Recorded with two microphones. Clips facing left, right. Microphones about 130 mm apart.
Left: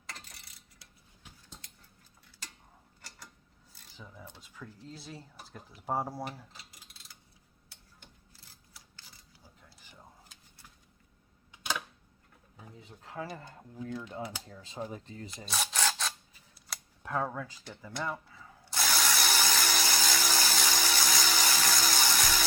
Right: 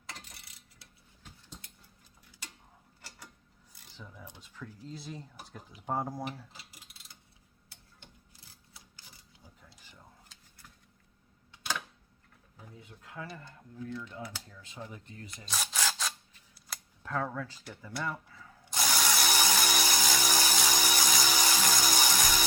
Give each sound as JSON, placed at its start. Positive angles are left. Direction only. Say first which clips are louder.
{"t": 3.9, "sound": "speech", "louder": "even", "side_deg": 10}
{"t": 11.5, "sound": "a sound", "louder": "left 1 dB", "side_deg": 15}
{"t": 12.8, "sound": "a sound", "louder": "left 4 dB", "side_deg": 30}
{"t": 13.2, "sound": "speech", "louder": "left 3 dB", "side_deg": 40}
{"t": 14.5, "sound": "speech", "louder": "left 6 dB", "side_deg": 30}
{"t": 15.4, "sound": "filing", "louder": "left 2 dB", "side_deg": 0}
{"t": 17.0, "sound": "speech", "louder": "left 1 dB", "side_deg": 15}
{"t": 18.6, "sound": "ratchet", "louder": "even", "side_deg": -15}